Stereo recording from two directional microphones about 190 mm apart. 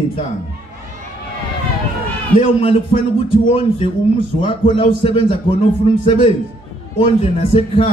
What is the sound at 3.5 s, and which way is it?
A man's voice, 30° left (ahead or behind).